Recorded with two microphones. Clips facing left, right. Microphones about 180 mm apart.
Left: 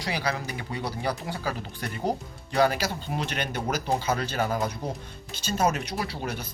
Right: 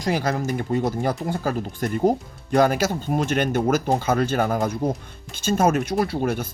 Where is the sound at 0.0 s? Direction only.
45° right (ahead or behind).